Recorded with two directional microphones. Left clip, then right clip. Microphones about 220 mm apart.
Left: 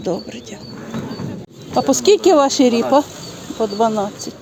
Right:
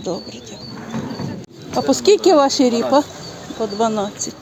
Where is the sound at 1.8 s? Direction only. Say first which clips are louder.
Left 1 dB; 10° left (ahead or behind).